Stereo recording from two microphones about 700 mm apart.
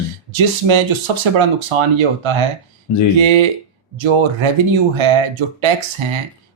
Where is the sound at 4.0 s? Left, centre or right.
Right.